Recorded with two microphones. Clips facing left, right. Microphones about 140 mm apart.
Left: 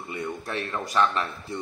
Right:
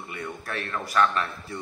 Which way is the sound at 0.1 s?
20° left (ahead or behind).